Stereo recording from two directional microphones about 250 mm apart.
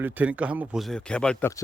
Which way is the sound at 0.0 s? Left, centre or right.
Centre.